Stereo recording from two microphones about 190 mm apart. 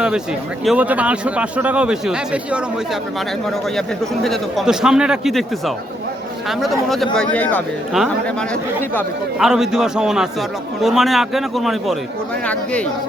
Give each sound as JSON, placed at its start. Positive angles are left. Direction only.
{"t": 0.6, "sound": "a man's voice", "side_deg": -5}